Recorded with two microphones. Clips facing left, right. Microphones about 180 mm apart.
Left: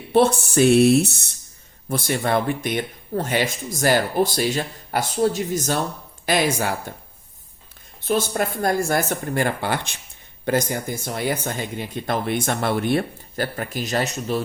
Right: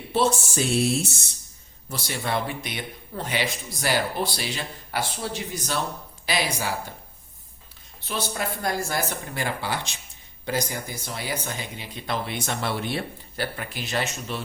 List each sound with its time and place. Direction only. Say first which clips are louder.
0.1 s speech: left 6 dB; 60° left (ahead or behind)
1.9 s speech: left 7 dB; 50° left (ahead or behind)
8.0 s speech: left 8 dB; 50° left (ahead or behind)